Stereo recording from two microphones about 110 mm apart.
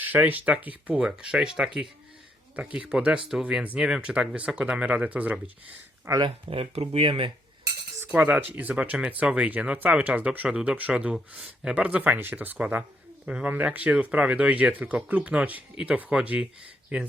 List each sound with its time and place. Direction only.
0.0 s speech: 15° right (ahead or behind)
6.2 s speech: 60° right (ahead or behind)
7.9 s speech: 15° right (ahead or behind)